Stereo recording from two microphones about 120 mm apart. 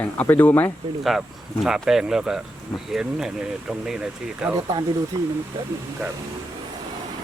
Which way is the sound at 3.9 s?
10° right (ahead or behind).